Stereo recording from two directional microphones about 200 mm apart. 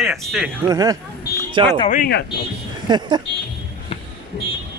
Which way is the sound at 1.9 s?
45° left (ahead or behind).